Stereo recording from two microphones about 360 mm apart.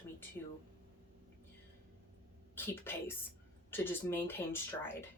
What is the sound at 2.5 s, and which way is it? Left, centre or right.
A woman's voice, centre.